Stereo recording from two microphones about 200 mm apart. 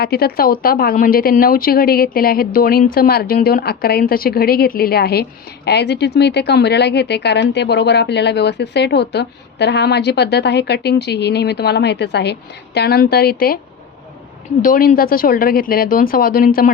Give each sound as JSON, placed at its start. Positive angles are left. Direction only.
{"t": 0.0, "sound": "speech", "side_deg": 50}
{"t": 14.6, "sound": "speech", "side_deg": 45}